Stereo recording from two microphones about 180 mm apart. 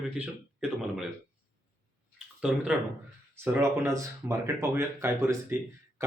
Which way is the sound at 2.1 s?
5° right (ahead or behind).